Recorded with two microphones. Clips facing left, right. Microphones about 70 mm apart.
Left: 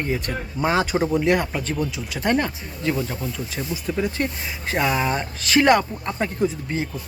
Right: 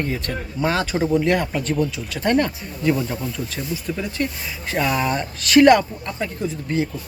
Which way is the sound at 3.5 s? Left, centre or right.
Left.